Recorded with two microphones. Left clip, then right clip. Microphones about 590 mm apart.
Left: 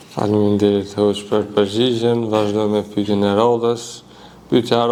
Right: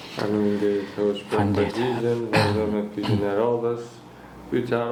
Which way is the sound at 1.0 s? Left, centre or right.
Left.